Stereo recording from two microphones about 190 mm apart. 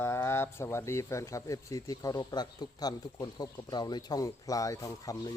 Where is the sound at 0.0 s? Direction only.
15° left (ahead or behind).